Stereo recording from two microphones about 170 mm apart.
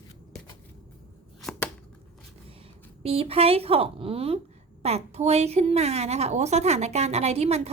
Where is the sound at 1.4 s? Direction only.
5° left (ahead or behind).